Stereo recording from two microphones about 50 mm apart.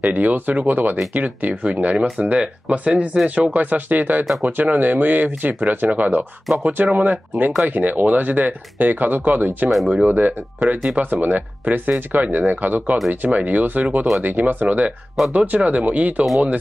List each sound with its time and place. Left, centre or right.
0.0 s speech: right
3.5 s speech: right
9.7 s speech: centre
10.0 s speech: right
10.6 s speech: right
11.0 s speech: right